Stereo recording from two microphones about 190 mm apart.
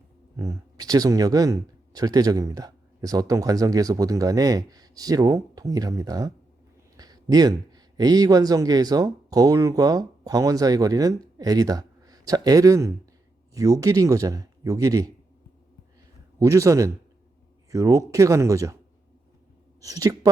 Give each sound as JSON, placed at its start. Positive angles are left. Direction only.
{"t": 0.3, "sound": "speech", "side_deg": -20}
{"t": 16.4, "sound": "speech", "side_deg": -15}
{"t": 19.8, "sound": "speech", "side_deg": -20}